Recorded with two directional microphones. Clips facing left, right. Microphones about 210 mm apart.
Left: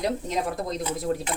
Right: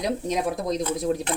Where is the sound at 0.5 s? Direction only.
20° right (ahead or behind).